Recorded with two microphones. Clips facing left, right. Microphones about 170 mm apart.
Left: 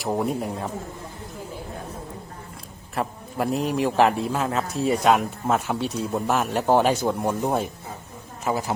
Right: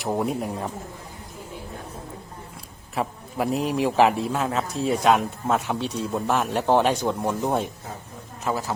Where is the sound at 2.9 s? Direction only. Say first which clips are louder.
Even; centre (ahead or behind).